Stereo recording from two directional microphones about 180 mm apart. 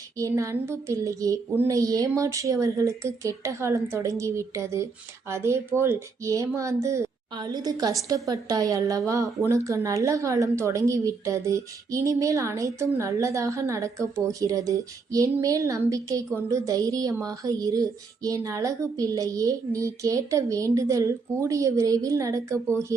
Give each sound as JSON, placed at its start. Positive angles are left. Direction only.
{"t": 0.2, "sound": "a woman's voice", "side_deg": -15}